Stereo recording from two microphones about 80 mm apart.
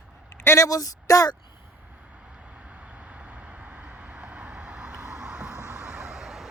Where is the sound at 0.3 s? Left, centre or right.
Left.